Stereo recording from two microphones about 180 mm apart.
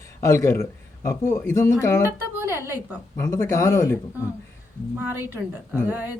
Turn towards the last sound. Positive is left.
turn(degrees=-10)  # may be behind; listen again after turning